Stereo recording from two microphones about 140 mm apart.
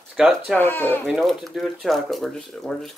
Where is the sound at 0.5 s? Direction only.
15° left (ahead or behind).